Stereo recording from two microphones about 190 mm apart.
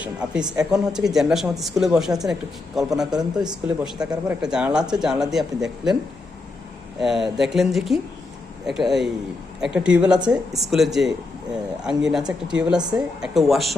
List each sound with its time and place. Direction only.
0.0 s speech: 5° right (ahead or behind)
3.1 s speech: 20° right (ahead or behind)
3.9 s speech: 5° right (ahead or behind)
7.0 s speech: centre (ahead or behind)